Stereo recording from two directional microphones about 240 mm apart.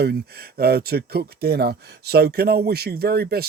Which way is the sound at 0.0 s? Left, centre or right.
Right.